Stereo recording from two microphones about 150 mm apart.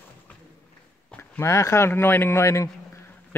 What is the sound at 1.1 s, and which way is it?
Speech, 10° left (ahead or behind).